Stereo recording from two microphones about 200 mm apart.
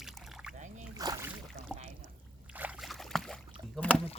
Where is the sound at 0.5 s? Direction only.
35° right (ahead or behind).